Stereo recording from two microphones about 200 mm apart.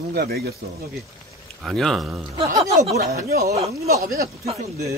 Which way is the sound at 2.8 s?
35° right (ahead or behind).